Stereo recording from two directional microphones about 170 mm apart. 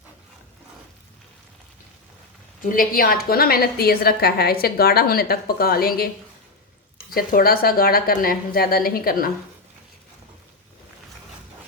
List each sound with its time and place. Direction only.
2.6 s a woman's voice: 55° left (ahead or behind)
7.1 s a woman's voice: 60° left (ahead or behind)